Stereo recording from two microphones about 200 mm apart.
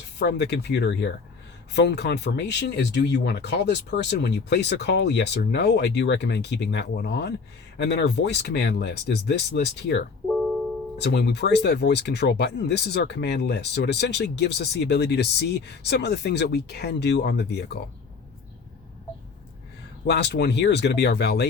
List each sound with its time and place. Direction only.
0.2 s speech: 60° left (ahead or behind)
20.1 s speech: 60° left (ahead or behind)